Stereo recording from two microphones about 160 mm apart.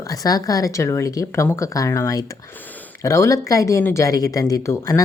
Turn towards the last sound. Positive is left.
turn(degrees=20)  # may be behind; listen again after turning